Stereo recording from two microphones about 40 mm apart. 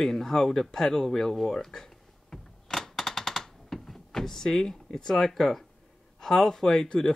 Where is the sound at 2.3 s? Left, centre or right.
Centre.